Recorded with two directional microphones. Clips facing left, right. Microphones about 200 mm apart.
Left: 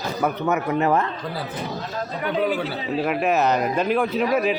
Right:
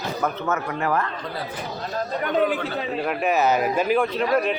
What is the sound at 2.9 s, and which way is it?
A man's voice, centre (ahead or behind).